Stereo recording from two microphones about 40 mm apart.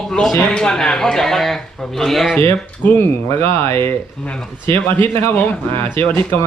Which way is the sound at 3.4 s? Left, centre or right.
Left.